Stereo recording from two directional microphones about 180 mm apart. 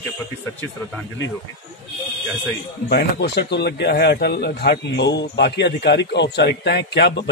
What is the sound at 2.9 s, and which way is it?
Speech, 65° left (ahead or behind).